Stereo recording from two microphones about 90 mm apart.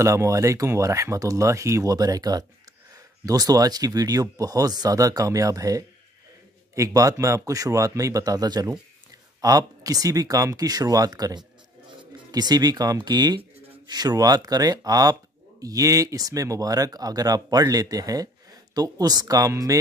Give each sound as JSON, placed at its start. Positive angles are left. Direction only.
{"t": 0.0, "sound": "speech", "side_deg": -35}